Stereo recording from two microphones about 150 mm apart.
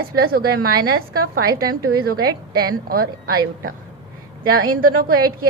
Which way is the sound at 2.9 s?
80° right.